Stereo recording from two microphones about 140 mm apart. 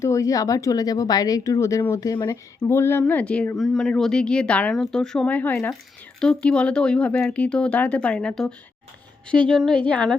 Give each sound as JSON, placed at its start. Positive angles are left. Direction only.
{"t": 0.0, "sound": "speech", "side_deg": 20}